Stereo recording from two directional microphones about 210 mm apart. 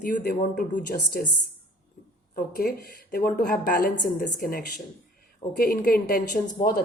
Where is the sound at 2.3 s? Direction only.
45° left (ahead or behind).